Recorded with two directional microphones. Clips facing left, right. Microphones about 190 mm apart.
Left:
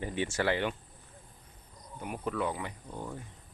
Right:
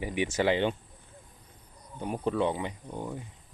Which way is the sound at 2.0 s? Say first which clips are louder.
Right 5 dB; 30° right (ahead or behind).